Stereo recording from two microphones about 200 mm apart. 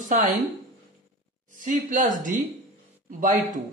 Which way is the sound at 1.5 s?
40° right (ahead or behind).